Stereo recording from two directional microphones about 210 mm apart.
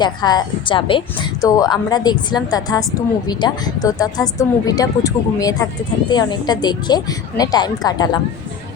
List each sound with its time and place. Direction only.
0.0 s a woman's voice: 20° left (ahead or behind)